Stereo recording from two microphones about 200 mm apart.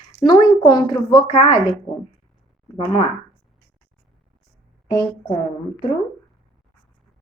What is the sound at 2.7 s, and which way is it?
Speech, 25° left (ahead or behind).